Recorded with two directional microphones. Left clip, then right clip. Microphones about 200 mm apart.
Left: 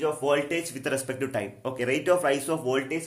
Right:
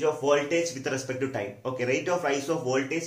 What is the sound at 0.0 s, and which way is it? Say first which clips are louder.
Speech: right 1 dB; 60° left (ahead or behind).